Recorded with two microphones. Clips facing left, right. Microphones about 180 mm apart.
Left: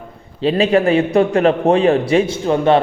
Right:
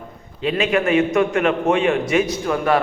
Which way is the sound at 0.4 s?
35° left (ahead or behind).